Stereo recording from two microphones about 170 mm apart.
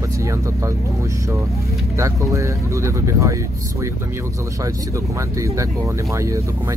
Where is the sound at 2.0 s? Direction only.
15° right (ahead or behind).